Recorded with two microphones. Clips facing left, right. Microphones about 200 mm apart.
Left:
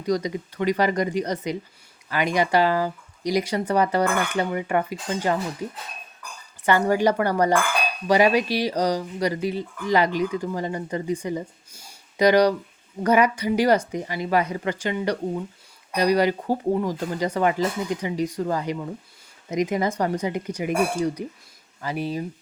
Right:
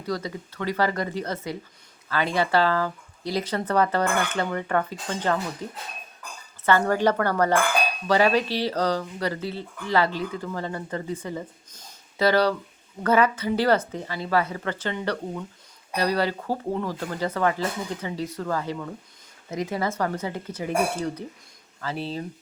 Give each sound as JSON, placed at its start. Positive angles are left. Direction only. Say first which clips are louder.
{"t": 0.0, "sound": "speech", "louder": "left 6 dB", "side_deg": 15}